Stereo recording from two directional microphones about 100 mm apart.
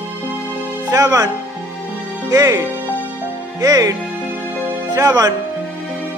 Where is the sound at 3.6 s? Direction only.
35° right (ahead or behind).